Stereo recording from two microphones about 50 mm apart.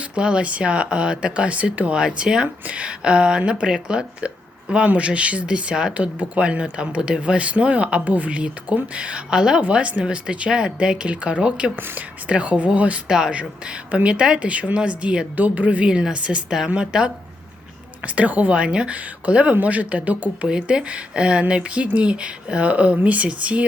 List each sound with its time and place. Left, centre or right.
0.2 s speech: centre
13.1 s a woman's voice: centre
15.4 s a woman's voice: right
18.0 s speech: right
18.6 s speech: centre
20.5 s speech: centre